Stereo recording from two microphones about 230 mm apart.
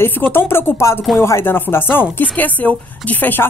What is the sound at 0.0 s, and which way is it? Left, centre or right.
Speech, centre.